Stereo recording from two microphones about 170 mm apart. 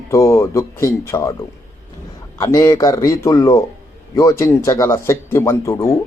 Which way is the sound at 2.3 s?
20° left (ahead or behind).